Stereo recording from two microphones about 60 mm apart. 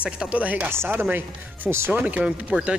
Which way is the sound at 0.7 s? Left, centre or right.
Right.